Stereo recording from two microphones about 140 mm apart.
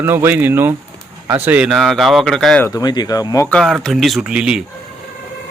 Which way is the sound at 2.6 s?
25° left (ahead or behind).